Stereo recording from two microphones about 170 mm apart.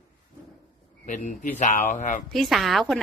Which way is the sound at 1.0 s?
50° left (ahead or behind).